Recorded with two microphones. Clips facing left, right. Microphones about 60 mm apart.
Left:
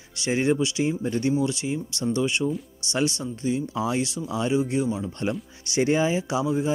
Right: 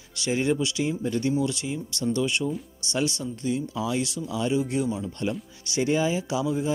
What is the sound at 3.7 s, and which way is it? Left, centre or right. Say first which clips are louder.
Speech: left 2 dB; left.